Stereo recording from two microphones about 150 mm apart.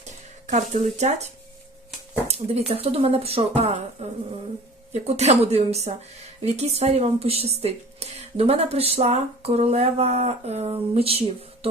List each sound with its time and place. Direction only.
0.4 s speech: 50° right (ahead or behind)
2.2 s speech: 45° right (ahead or behind)
5.0 s speech: 45° right (ahead or behind)